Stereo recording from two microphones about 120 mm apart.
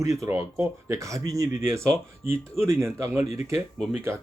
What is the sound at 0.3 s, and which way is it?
Speech, 20° right (ahead or behind).